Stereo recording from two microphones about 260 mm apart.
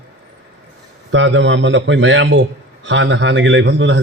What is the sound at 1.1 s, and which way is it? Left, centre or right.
A man's voice, right.